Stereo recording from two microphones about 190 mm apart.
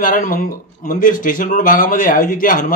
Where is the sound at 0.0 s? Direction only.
45° left (ahead or behind).